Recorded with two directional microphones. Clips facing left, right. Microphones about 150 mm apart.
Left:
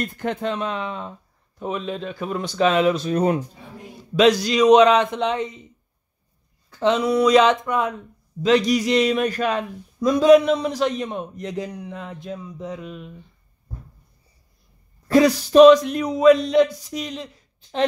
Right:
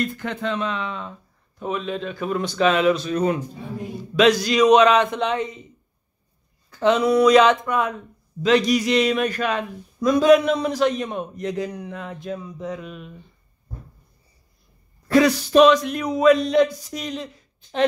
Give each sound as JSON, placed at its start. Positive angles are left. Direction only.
{"t": 0.2, "sound": "speech", "side_deg": 45}
{"t": 4.2, "sound": "speech", "side_deg": 30}
{"t": 7.1, "sound": "speech", "side_deg": 25}
{"t": 15.0, "sound": "speech", "side_deg": 35}
{"t": 16.0, "sound": "speech", "side_deg": 25}